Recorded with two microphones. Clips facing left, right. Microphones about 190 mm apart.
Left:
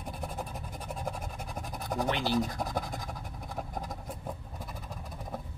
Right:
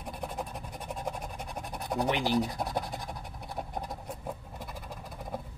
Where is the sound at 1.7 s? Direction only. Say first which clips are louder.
Right 2 dB; 15° right (ahead or behind).